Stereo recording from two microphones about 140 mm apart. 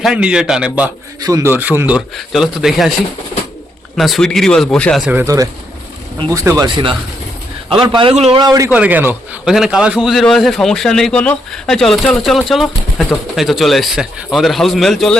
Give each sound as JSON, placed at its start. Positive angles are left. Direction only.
{"t": 0.0, "sound": "a man's voice", "side_deg": -5}
{"t": 1.2, "sound": "speech", "side_deg": -25}
{"t": 2.0, "sound": "a man's voice", "side_deg": 0}
{"t": 3.9, "sound": "a man's voice", "side_deg": 0}
{"t": 5.2, "sound": "speech", "side_deg": -25}
{"t": 7.7, "sound": "a man's voice", "side_deg": -35}
{"t": 8.1, "sound": "a man's voice", "side_deg": -50}
{"t": 8.4, "sound": "speech", "side_deg": -25}
{"t": 8.7, "sound": "a man's voice", "side_deg": -10}